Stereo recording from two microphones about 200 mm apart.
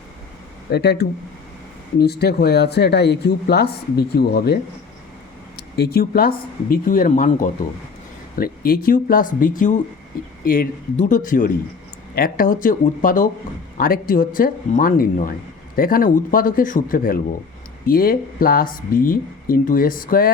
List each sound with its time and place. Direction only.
0.7 s speech: 55° left (ahead or behind)
5.7 s speech: 50° left (ahead or behind)